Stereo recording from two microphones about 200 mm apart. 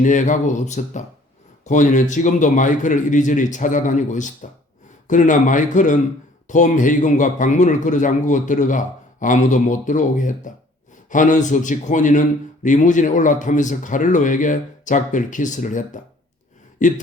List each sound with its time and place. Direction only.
0.0 s a man's voice: 40° left (ahead or behind)